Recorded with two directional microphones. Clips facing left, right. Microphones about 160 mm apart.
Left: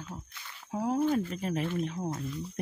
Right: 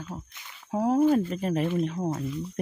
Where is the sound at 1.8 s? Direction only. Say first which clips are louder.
Right 5 dB; 60° right (ahead or behind).